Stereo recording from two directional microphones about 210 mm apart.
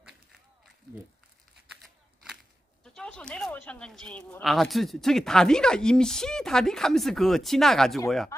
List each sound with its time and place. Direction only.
2.8 s speech: 5° left (ahead or behind)
8.3 s speech: 15° left (ahead or behind)